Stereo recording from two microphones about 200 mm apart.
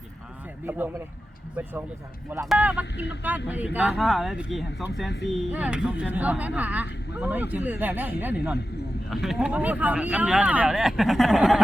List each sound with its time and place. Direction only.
0.6 s a man's voice: 10° right (ahead or behind)
2.9 s speech: 60° left (ahead or behind)
3.2 s speech: 10° right (ahead or behind)